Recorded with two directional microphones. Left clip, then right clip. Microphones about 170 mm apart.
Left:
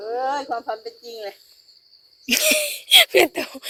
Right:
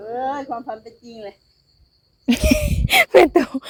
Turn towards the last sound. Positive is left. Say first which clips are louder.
# right 5 dB
turn(degrees=-40)  # may be behind; listen again after turning